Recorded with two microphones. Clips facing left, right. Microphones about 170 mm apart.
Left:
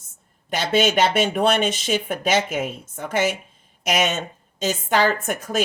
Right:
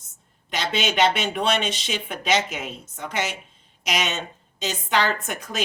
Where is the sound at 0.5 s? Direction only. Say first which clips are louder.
Left 5 dB; 50° left (ahead or behind).